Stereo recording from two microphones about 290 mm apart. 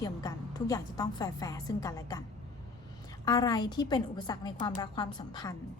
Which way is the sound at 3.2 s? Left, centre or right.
Centre.